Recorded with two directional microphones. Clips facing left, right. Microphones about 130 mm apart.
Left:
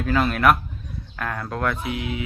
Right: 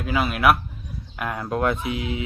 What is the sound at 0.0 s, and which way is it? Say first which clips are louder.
Speech: left 1 dB; 10° right (ahead or behind).